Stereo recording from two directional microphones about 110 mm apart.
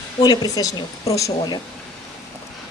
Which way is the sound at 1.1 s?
30° left (ahead or behind).